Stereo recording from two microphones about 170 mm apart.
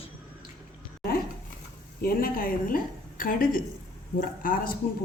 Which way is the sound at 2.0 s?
60° left (ahead or behind).